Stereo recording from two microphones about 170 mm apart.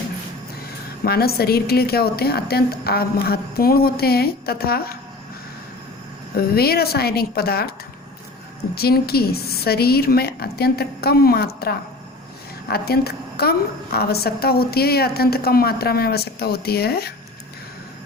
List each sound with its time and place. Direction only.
1.0 s a woman's voice: 65° left (ahead or behind)
6.3 s a woman's voice: 65° left (ahead or behind)
8.7 s a woman's voice: 65° left (ahead or behind)